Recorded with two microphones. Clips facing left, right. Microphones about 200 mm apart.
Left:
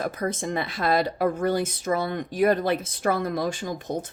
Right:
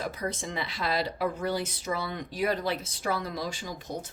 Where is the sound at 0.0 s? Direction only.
50° left (ahead or behind).